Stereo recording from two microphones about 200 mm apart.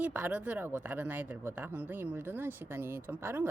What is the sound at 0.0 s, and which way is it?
A woman's voice, 10° right (ahead or behind).